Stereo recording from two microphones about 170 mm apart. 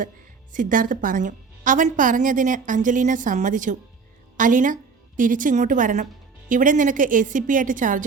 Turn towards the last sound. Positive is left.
turn(degrees=-50)  # may be behind; listen again after turning